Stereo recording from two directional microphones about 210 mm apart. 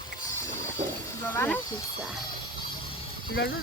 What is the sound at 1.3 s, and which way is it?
Speech, 10° left (ahead or behind).